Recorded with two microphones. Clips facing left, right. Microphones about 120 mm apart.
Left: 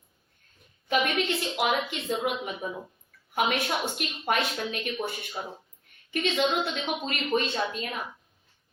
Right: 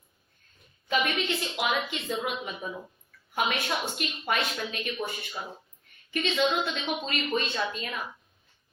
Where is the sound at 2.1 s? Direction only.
50° left (ahead or behind).